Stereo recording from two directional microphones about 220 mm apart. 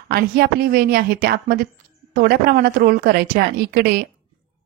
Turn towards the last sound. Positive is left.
turn(degrees=-45)  # may be behind; listen again after turning